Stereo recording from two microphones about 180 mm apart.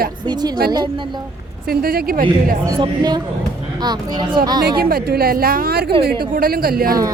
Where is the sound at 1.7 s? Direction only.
55° right (ahead or behind).